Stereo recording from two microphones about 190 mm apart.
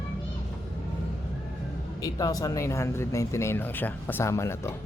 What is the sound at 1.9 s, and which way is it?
Speech, 20° left (ahead or behind).